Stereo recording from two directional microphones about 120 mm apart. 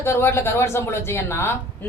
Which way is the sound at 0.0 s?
20° left (ahead or behind).